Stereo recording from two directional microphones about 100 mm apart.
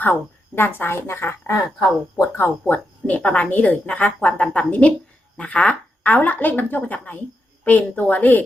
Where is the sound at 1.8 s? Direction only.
40° left (ahead or behind).